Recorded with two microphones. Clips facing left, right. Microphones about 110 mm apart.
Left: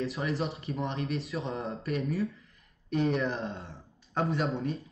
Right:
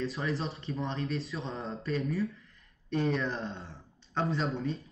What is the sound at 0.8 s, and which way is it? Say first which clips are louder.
Speech: left 1 dB; 30° right (ahead or behind).